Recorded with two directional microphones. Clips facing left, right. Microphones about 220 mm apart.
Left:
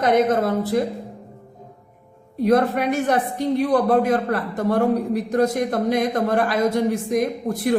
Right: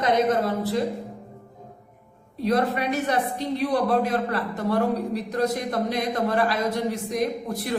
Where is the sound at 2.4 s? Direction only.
50° left (ahead or behind).